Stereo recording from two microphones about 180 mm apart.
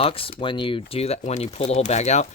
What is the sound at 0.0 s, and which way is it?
Speech, 30° left (ahead or behind).